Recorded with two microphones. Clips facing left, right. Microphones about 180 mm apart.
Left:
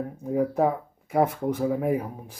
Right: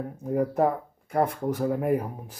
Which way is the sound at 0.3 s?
Centre (ahead or behind).